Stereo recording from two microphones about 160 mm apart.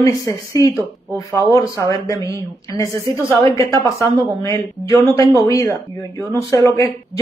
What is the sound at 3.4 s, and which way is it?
Speech, 20° left (ahead or behind).